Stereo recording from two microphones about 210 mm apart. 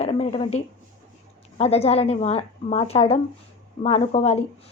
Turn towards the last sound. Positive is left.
turn(degrees=30)  # may be behind; listen again after turning